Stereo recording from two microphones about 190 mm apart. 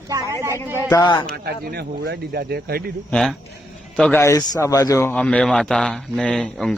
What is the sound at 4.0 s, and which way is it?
Speech, 10° left (ahead or behind).